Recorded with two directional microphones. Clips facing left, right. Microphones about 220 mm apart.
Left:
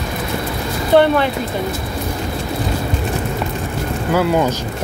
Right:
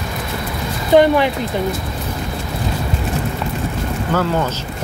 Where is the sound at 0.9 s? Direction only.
15° right (ahead or behind).